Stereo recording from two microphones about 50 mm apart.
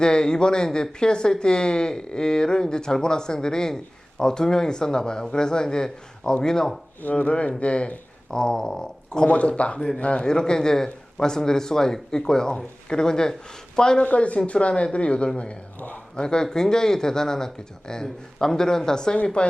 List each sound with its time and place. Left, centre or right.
0.0 s speech: centre
7.0 s speech: left
9.3 s speech: left
14.0 s speech: left